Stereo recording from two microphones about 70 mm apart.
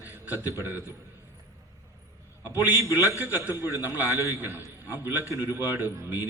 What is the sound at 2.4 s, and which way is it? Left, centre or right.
A man's voice, left.